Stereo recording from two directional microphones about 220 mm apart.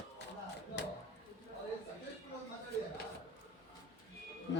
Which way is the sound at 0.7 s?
55° left (ahead or behind).